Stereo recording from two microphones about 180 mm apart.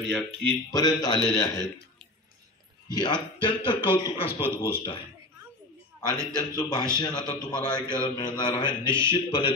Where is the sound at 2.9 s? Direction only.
25° left (ahead or behind).